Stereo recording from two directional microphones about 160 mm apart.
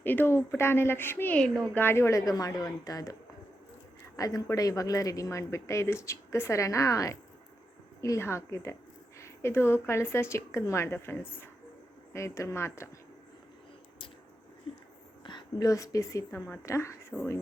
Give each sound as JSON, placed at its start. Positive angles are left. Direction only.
{"t": 0.0, "sound": "speech", "side_deg": 10}
{"t": 4.2, "sound": "speech", "side_deg": 20}
{"t": 15.2, "sound": "a woman's voice", "side_deg": 30}